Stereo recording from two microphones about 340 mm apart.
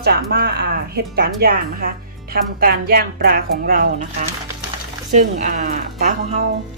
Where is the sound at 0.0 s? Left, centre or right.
Right.